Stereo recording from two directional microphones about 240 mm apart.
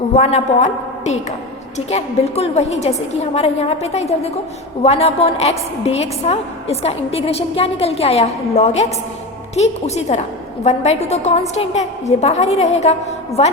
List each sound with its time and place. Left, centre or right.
0.2 s a woman's voice: left